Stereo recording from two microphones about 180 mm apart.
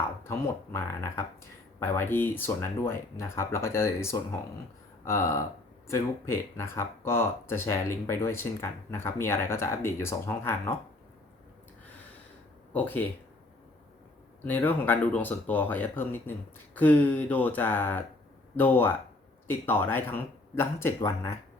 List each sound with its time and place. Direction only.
0.3 s speech: 15° left (ahead or behind)
12.7 s speech: 10° left (ahead or behind)
14.4 s speech: 10° left (ahead or behind)